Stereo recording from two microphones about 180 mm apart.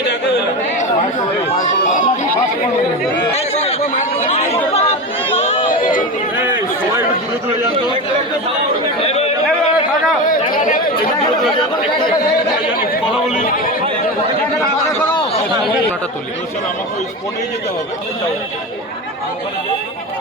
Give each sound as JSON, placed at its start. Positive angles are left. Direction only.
{"t": 1.5, "sound": "chatter", "side_deg": 45}
{"t": 3.3, "sound": "speech", "side_deg": 35}
{"t": 4.7, "sound": "chatter", "side_deg": 35}
{"t": 5.4, "sound": "run", "side_deg": 35}
{"t": 9.0, "sound": "chatter", "side_deg": 35}
{"t": 10.5, "sound": "chatter", "side_deg": 50}
{"t": 12.9, "sound": "speech", "side_deg": 50}